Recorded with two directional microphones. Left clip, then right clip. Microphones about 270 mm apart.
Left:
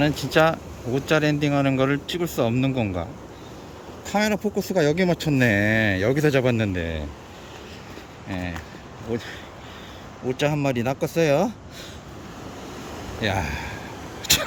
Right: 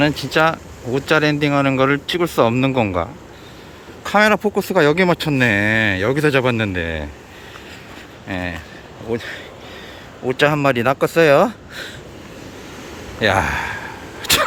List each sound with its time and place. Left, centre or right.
0.0 s speech: centre
8.3 s speech: centre
13.1 s speech: centre
14.2 s dog: centre